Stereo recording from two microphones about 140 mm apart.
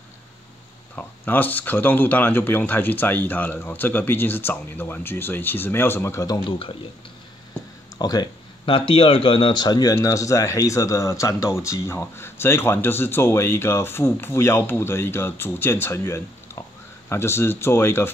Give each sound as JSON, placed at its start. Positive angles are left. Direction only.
{"t": 0.9, "sound": "speech", "side_deg": 10}
{"t": 8.0, "sound": "speech", "side_deg": 30}